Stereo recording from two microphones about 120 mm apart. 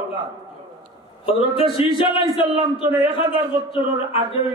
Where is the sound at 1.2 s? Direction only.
50° left (ahead or behind).